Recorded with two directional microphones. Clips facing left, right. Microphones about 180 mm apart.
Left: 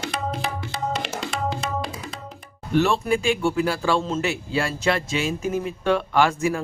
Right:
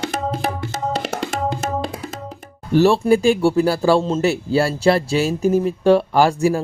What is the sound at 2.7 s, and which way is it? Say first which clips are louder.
A man's voice: right 7 dB; 35° right (ahead or behind).